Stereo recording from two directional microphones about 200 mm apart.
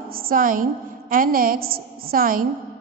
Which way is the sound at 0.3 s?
45° right (ahead or behind).